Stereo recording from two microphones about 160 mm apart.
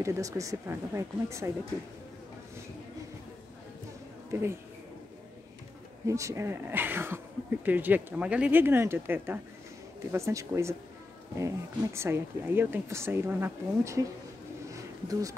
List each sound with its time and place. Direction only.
0.0 s speech: 20° right (ahead or behind)
4.3 s speech: 15° right (ahead or behind)
6.0 s speech: 20° right (ahead or behind)
14.7 s a sound: 20° right (ahead or behind)